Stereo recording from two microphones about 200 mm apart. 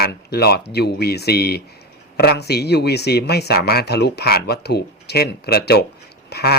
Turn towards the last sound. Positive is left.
turn(degrees=50)  # may be behind; listen again after turning